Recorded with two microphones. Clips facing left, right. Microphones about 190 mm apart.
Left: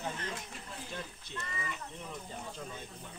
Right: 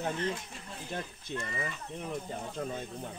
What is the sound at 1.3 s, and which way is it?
Speech, 55° right (ahead or behind).